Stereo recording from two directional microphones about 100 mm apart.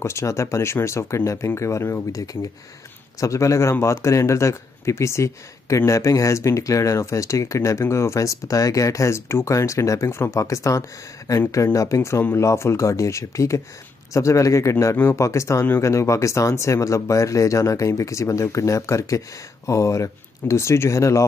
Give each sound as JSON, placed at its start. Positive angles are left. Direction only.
{"t": 0.0, "sound": "speech", "side_deg": 30}